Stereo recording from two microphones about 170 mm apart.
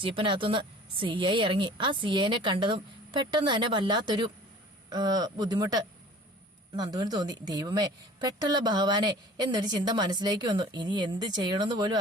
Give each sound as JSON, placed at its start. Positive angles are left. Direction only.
{"t": 0.0, "sound": "a woman's voice", "side_deg": -30}